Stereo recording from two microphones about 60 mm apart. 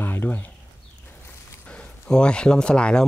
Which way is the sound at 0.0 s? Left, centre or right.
Left.